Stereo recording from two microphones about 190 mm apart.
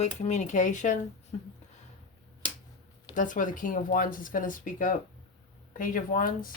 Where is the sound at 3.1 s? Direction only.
45° left (ahead or behind).